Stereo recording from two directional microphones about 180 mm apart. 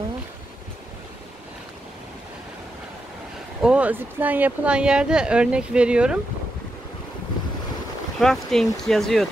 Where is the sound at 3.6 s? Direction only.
5° right (ahead or behind).